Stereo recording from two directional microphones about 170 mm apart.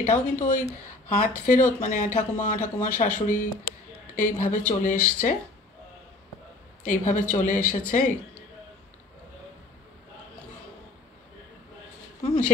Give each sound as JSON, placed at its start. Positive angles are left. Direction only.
{"t": 0.0, "sound": "speech", "side_deg": 45}
{"t": 6.9, "sound": "speech", "side_deg": 45}